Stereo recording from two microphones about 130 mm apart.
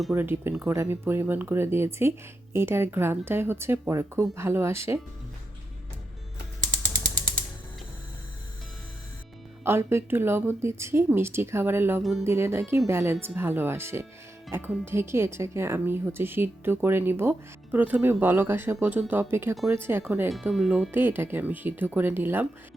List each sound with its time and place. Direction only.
0.1 s speech: 15° right (ahead or behind)
9.6 s speech: 20° right (ahead or behind)
20.5 s speech: 5° right (ahead or behind)